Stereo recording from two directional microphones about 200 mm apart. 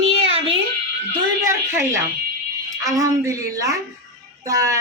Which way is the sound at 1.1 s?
15° right (ahead or behind).